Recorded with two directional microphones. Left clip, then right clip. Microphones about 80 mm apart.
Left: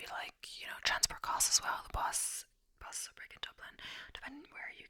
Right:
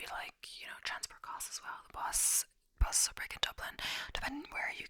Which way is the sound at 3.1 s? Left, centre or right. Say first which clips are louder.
Right 9 dB; right.